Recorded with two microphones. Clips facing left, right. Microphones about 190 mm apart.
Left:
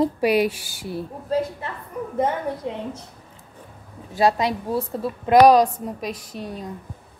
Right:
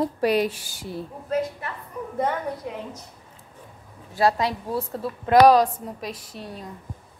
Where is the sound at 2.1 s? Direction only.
25° left (ahead or behind).